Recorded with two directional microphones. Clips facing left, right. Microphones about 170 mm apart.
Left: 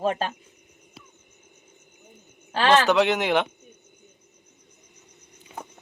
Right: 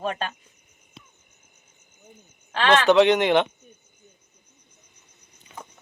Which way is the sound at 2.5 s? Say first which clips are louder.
Left 1 dB; 35° left (ahead or behind).